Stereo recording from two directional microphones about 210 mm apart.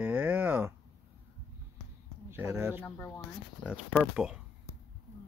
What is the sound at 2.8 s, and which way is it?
Speech, 10° left (ahead or behind).